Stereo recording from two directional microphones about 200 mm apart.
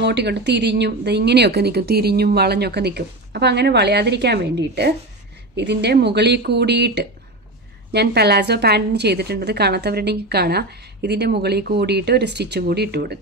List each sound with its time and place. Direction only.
0.0 s a woman's voice: 55° right (ahead or behind)